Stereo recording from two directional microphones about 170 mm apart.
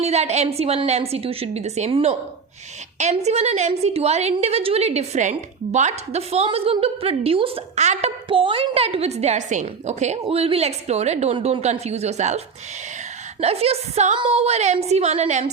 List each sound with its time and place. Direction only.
0.0 s a woman's voice: 40° right (ahead or behind)
13.4 s a woman's voice: 35° right (ahead or behind)